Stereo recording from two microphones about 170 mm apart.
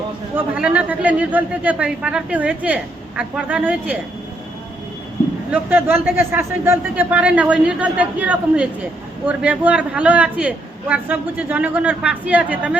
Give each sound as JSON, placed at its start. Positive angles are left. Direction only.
{"t": 0.3, "sound": "a man's voice", "side_deg": -5}
{"t": 5.5, "sound": "a man's voice", "side_deg": -10}